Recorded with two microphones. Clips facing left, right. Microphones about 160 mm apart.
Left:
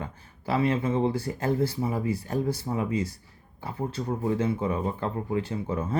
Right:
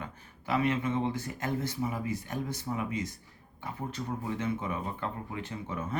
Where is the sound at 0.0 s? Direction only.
30° left (ahead or behind).